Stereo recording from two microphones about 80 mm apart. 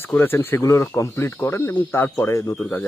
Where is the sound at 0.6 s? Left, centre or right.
Left.